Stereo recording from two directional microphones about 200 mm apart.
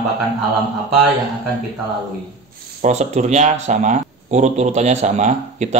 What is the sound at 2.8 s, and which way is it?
Speech, 35° right (ahead or behind).